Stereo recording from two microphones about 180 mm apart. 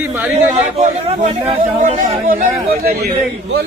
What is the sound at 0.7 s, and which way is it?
A man's voice, 35° right (ahead or behind).